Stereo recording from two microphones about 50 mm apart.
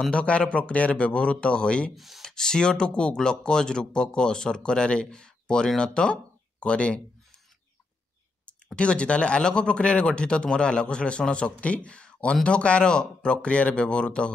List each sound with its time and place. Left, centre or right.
0.1 s speech: left
2.0 s speech: centre
2.2 s speech: centre
8.7 s speech: left